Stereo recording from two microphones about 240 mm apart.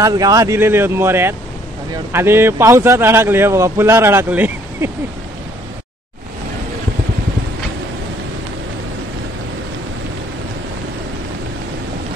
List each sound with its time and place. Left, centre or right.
0.0 s a man's voice: centre